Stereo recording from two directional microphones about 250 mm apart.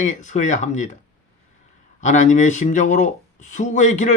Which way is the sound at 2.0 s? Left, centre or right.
Left.